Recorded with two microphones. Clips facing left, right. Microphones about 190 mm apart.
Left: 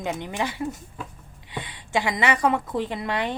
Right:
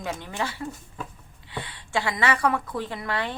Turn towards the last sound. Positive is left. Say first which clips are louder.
# left 3 dB
turn(degrees=20)  # may be behind; listen again after turning